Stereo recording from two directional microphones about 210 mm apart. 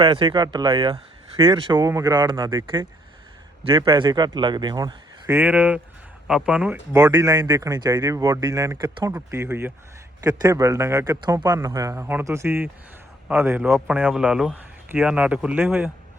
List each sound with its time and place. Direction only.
0.0 s speech: 25° right (ahead or behind); by 15.9 s 10° right (ahead or behind)